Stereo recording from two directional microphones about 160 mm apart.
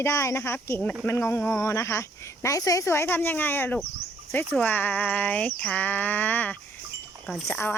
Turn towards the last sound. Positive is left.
turn(degrees=5)  # may be behind; listen again after turning